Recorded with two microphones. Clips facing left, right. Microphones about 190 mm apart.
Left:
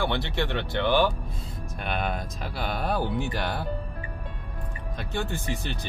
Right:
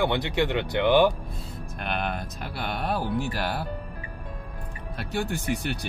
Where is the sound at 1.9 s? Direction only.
Centre (ahead or behind).